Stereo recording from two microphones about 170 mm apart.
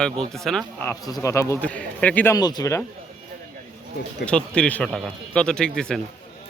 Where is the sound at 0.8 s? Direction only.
15° left (ahead or behind).